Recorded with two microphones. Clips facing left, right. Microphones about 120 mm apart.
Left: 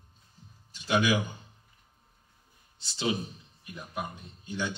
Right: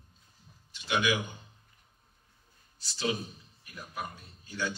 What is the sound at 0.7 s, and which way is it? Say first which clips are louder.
Speech: left 3 dB; 40° left (ahead or behind).